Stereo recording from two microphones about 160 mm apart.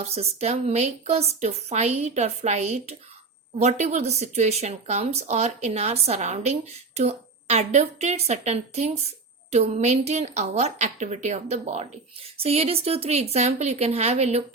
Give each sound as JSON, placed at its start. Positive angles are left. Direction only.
{"t": 0.0, "sound": "speech", "side_deg": -40}